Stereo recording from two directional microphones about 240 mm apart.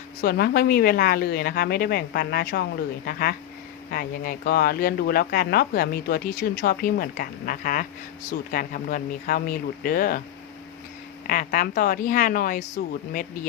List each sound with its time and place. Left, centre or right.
0.2 s speech: left
11.3 s speech: left